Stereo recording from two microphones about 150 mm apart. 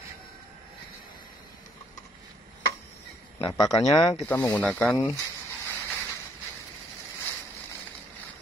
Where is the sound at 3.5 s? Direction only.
25° left (ahead or behind).